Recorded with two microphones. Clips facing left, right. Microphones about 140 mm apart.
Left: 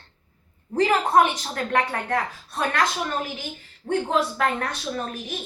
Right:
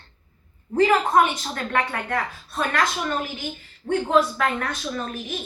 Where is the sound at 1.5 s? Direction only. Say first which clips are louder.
Left 1 dB; 35° left (ahead or behind).